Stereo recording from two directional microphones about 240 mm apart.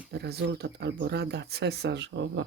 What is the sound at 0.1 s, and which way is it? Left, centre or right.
Speech, right.